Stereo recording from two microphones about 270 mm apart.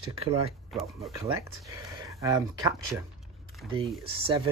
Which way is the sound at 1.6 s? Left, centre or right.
Centre.